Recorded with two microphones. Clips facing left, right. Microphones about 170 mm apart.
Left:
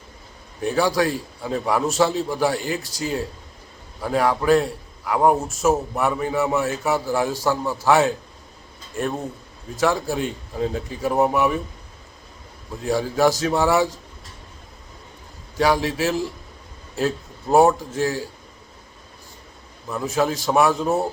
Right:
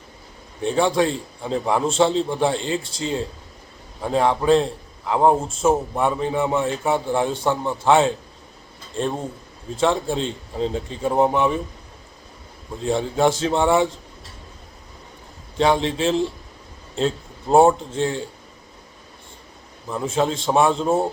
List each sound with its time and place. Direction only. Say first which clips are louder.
0.6 s a man's voice: right 1 dB; 25° right (ahead or behind)
12.8 s a man's voice: even; 25° right (ahead or behind)
15.5 s a man's voice: right 1 dB; 25° right (ahead or behind)
19.9 s a man's voice: even; 25° right (ahead or behind)